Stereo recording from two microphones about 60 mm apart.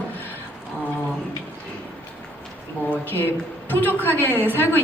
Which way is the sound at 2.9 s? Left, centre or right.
Left.